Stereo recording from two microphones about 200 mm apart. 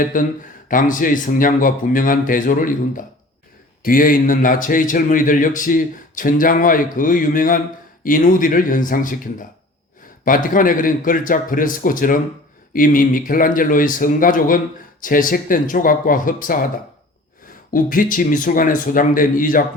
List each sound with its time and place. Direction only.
0.0 s speech: 40° left (ahead or behind)
17.7 s speech: 45° left (ahead or behind)